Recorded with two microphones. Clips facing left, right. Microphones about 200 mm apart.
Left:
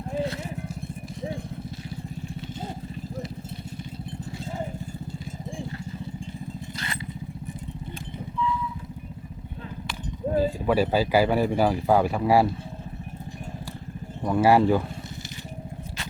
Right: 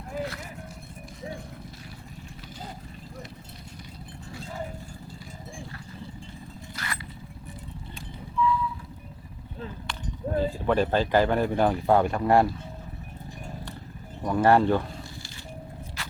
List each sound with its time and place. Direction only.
0.1 s music: 25° left (ahead or behind)
6.7 s a sound: 25° left (ahead or behind)
10.3 s speech: 10° left (ahead or behind)
14.2 s speech: 5° left (ahead or behind)